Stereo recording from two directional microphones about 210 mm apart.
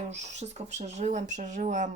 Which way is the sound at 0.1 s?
30° right (ahead or behind).